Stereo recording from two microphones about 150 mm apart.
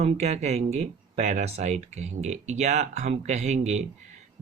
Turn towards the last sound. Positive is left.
turn(degrees=-50)  # may be behind; listen again after turning